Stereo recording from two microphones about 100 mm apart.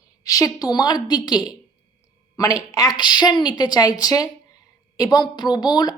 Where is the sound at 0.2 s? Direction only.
35° left (ahead or behind).